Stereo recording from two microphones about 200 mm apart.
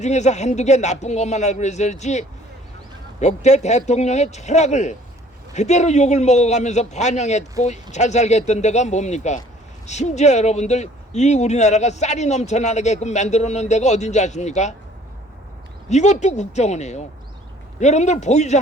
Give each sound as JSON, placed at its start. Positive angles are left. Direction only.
{"t": 0.0, "sound": "speech", "side_deg": 35}
{"t": 15.9, "sound": "speech", "side_deg": 35}